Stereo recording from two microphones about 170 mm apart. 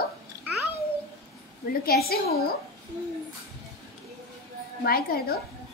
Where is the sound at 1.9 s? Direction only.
70° left (ahead or behind).